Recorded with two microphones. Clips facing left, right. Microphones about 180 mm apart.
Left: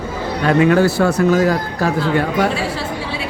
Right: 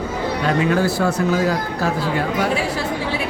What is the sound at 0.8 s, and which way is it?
Speech, 70° left (ahead or behind).